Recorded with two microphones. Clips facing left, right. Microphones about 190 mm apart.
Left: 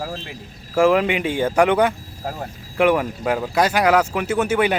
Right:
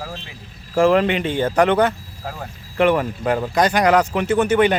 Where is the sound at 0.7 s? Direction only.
5° left (ahead or behind).